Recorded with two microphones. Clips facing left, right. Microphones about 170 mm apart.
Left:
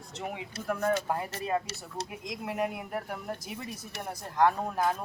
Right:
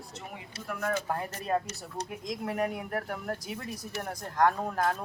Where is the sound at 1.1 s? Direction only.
5° left (ahead or behind).